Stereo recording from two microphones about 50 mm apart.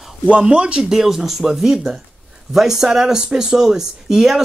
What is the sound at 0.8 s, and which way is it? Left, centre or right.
A woman's voice, centre.